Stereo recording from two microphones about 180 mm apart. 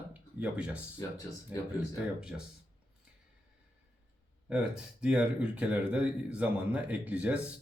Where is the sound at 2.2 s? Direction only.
5° right (ahead or behind).